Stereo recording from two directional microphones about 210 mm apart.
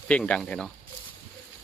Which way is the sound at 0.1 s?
5° left (ahead or behind).